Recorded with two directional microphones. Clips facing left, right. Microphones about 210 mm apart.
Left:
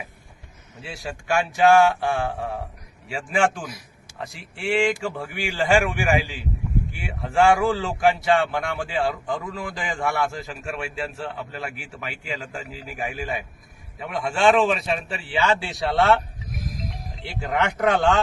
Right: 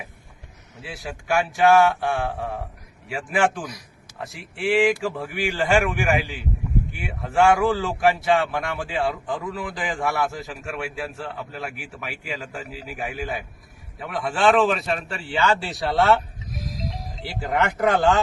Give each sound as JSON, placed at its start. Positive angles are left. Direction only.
{"t": 0.8, "sound": "a man's voice", "side_deg": 0}
{"t": 16.6, "sound": "music", "side_deg": 50}
{"t": 17.2, "sound": "a man's voice", "side_deg": 0}